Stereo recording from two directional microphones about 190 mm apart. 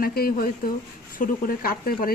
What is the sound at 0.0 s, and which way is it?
Speech, 50° left (ahead or behind).